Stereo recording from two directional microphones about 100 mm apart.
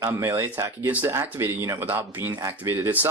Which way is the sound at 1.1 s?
25° right (ahead or behind).